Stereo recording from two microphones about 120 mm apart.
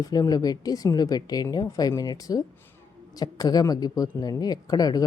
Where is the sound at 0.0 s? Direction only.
30° left (ahead or behind).